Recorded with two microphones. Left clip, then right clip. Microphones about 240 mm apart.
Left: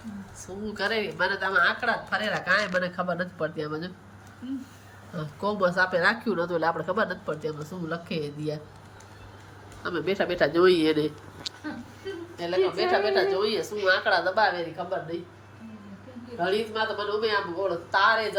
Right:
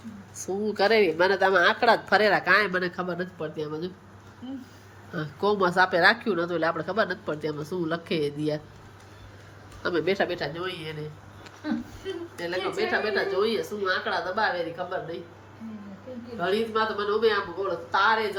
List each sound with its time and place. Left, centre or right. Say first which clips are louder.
0.3 s a woman's voice: right 7 dB; centre
5.1 s a woman's voice: right 4 dB; centre
9.8 s a woman's voice: right 2 dB; centre
10.3 s speech: left 11 dB; centre
11.5 s a sound: left 12 dB; centre
12.4 s a woman's voice: left 4 dB; centre
16.4 s a woman's voice: right 1 dB; centre